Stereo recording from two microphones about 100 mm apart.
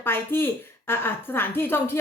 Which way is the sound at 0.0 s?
20° left (ahead or behind).